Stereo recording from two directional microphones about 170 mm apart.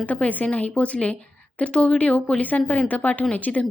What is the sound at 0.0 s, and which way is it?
A woman's voice, 10° left (ahead or behind).